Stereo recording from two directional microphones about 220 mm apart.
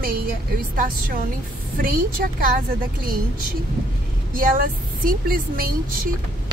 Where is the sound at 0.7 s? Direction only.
40° right (ahead or behind).